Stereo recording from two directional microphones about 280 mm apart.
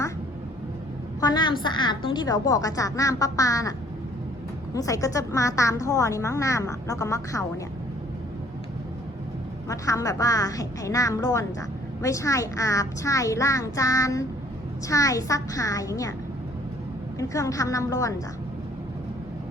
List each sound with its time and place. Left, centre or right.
1.2 s a woman's voice: centre
9.6 s a woman's voice: centre
17.2 s a woman's voice: centre